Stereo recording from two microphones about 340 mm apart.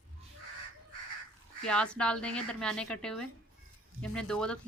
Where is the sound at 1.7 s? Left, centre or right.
Centre.